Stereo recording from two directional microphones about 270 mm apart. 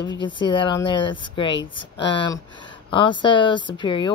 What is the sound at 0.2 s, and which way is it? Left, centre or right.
Speech, centre.